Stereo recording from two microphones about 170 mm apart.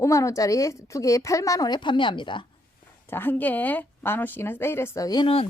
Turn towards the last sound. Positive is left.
turn(degrees=30)  # may be behind; listen again after turning